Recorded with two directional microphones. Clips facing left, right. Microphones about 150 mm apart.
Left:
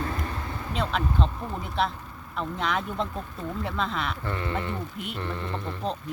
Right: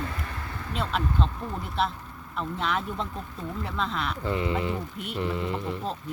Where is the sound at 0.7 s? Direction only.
Centre (ahead or behind).